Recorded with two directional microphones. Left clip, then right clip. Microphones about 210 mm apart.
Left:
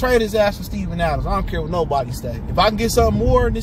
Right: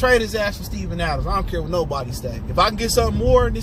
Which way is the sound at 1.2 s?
10° left (ahead or behind).